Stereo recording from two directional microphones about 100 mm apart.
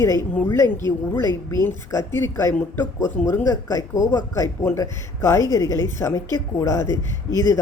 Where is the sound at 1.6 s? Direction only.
25° left (ahead or behind).